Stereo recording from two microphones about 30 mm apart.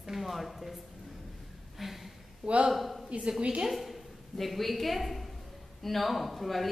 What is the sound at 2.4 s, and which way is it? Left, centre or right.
Speech, right.